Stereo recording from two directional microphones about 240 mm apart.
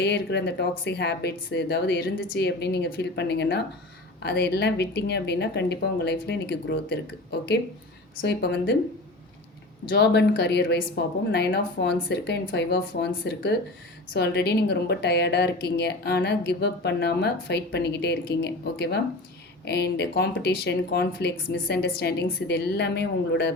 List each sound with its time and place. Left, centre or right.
0.0 s a woman's voice: left
9.9 s a woman's voice: left